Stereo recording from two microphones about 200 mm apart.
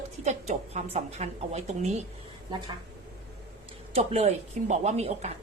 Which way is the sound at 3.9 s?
30° right (ahead or behind).